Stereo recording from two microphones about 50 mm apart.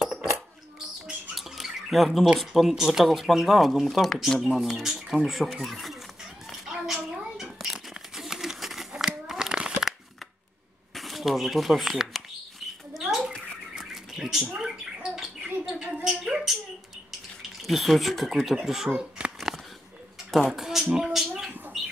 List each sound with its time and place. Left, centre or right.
0.0 s coin: centre
1.3 s squawk: centre
2.7 s speech: centre
6.5 s a sound: centre
7.6 s crumpling: centre
11.0 s speech: centre
12.9 s rodents: centre
13.7 s a sound: centre
15.1 s bird: centre
17.6 s speech: centre
19.2 s a sound: centre
20.2 s a sound: centre